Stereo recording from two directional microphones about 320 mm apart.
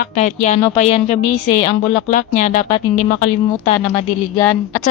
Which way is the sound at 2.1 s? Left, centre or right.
Left.